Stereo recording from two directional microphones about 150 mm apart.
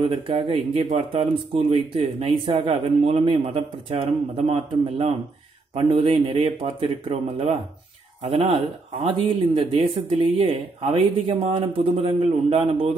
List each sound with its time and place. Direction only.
0.1 s speech: 35° right (ahead or behind)